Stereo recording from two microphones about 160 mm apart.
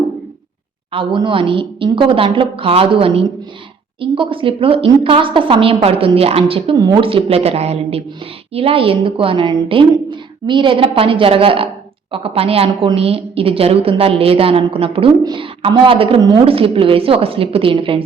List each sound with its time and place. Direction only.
0.9 s a woman's voice: 30° right (ahead or behind)